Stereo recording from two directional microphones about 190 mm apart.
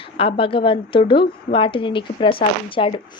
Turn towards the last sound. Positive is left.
turn(degrees=30)  # may be behind; listen again after turning